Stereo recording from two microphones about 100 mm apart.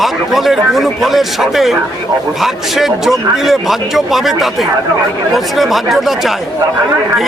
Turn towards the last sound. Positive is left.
turn(degrees=0)  # may be behind; listen again after turning